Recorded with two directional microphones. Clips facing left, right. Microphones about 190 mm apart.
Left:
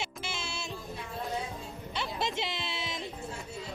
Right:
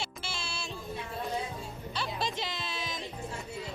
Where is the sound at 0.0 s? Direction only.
20° left (ahead or behind).